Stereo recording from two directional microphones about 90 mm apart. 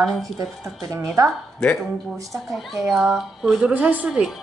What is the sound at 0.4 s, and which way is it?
Speech, 40° right (ahead or behind).